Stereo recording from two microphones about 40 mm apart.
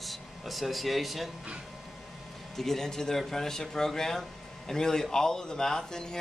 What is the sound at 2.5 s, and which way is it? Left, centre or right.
Speech, centre.